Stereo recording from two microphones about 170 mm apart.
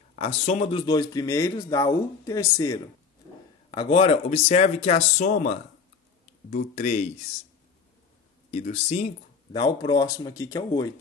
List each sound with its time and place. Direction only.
0.1 s speech: 35° left (ahead or behind); by 2.8 s 20° left (ahead or behind)
3.7 s speech: 30° left (ahead or behind)
6.7 s speech: 40° left (ahead or behind)
8.5 s speech: 45° left (ahead or behind)
9.5 s speech: 25° left (ahead or behind)